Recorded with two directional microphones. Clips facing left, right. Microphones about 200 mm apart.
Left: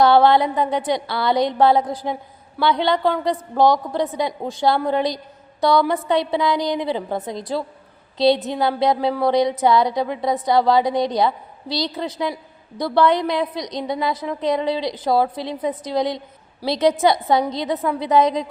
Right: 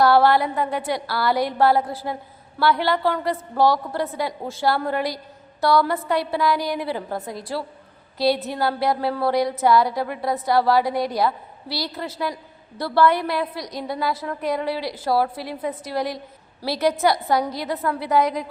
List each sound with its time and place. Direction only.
0.0 s a woman's voice: 20° left (ahead or behind)